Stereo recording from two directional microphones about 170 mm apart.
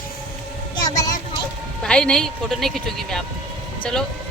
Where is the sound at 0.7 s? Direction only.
20° left (ahead or behind).